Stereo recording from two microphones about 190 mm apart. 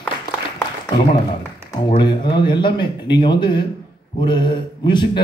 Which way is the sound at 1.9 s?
25° left (ahead or behind).